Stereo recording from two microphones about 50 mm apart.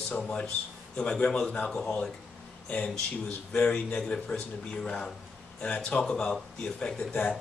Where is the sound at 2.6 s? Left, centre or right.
Left.